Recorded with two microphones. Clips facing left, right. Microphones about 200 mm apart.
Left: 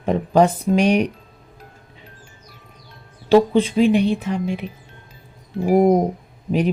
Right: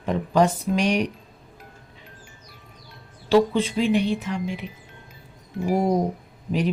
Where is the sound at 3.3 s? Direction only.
55° left (ahead or behind).